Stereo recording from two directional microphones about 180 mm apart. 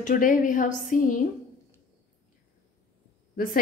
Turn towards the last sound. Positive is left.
turn(degrees=50)  # may be behind; listen again after turning